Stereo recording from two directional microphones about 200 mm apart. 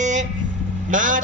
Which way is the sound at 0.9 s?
40° right (ahead or behind).